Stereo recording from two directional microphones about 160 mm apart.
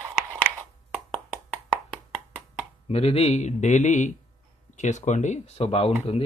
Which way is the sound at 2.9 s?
40° left (ahead or behind).